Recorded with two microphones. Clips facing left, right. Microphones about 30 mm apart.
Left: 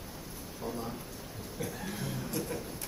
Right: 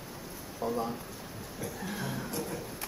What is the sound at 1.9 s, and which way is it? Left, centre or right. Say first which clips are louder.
Chuckle: right 2 dB; centre.